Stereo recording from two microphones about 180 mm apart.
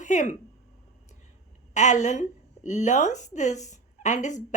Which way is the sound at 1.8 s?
40° left (ahead or behind).